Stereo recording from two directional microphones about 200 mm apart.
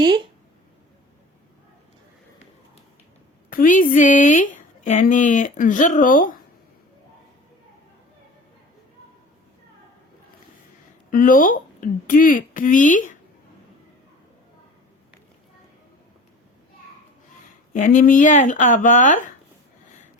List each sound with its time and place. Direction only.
0.0 s speech: 25° right (ahead or behind)
3.5 s a woman's voice: 40° left (ahead or behind)
11.1 s speech: 40° left (ahead or behind)
17.7 s a woman's voice: 40° left (ahead or behind)